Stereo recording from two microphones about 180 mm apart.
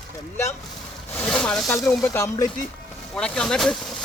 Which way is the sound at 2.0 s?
15° left (ahead or behind).